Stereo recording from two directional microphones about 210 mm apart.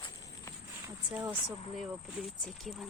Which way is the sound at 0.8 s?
15° right (ahead or behind).